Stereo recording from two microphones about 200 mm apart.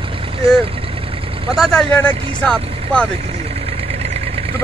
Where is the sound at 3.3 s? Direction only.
30° right (ahead or behind).